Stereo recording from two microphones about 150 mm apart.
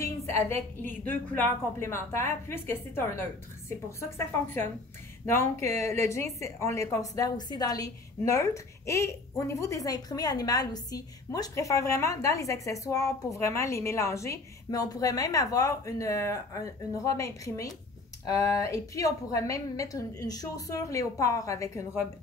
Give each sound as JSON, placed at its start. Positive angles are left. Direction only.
{"t": 0.5, "sound": "a woman's voice", "side_deg": 10}
{"t": 5.2, "sound": "a woman's voice", "side_deg": 15}